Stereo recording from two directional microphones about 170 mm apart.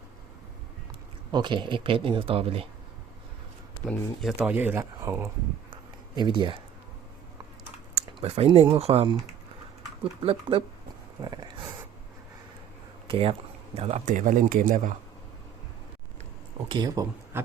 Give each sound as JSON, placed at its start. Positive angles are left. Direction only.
{"t": 1.3, "sound": "speech", "side_deg": -25}
{"t": 3.8, "sound": "speech", "side_deg": 0}
{"t": 5.7, "sound": "a sound", "side_deg": -25}
{"t": 7.9, "sound": "typing", "side_deg": -35}
{"t": 8.7, "sound": "speech", "side_deg": -35}
{"t": 11.2, "sound": "a sound", "side_deg": -25}
{"t": 13.1, "sound": "speech", "side_deg": -35}
{"t": 16.6, "sound": "speech", "side_deg": -25}